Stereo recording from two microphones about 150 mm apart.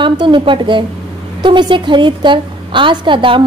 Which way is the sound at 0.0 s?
30° right (ahead or behind).